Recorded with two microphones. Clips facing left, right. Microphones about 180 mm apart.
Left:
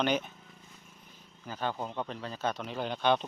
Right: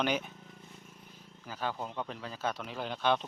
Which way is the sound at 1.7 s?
10° left (ahead or behind).